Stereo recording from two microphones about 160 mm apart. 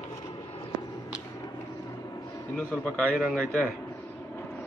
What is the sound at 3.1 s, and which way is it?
Speech, centre (ahead or behind).